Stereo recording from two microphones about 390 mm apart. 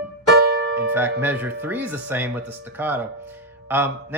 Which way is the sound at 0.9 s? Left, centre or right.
Centre.